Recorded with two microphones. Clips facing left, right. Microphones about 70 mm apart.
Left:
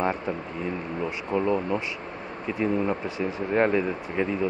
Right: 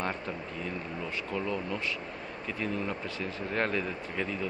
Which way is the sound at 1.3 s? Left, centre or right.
Left.